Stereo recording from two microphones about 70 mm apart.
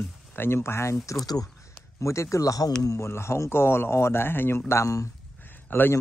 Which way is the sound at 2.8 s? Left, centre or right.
Left.